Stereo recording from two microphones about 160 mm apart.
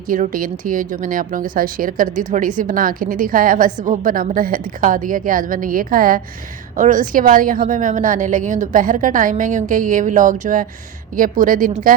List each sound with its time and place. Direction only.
0.1 s a woman's voice: 60° right (ahead or behind)